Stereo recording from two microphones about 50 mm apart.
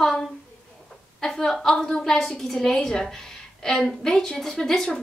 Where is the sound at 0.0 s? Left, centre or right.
Centre.